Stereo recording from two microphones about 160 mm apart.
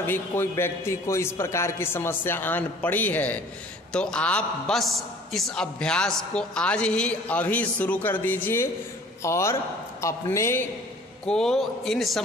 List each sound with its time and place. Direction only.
0.0 s a man's voice: 15° left (ahead or behind)
11.2 s a man's voice: 5° left (ahead or behind)